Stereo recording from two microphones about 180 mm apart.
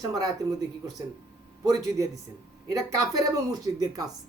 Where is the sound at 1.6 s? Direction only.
20° right (ahead or behind).